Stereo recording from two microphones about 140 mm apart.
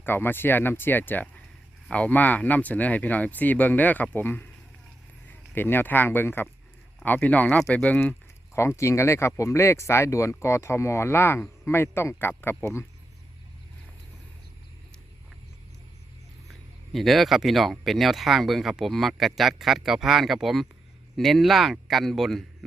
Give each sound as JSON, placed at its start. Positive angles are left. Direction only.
{"t": 0.0, "sound": "speech", "side_deg": 15}
{"t": 8.5, "sound": "speech", "side_deg": 20}
{"t": 16.5, "sound": "speech", "side_deg": 0}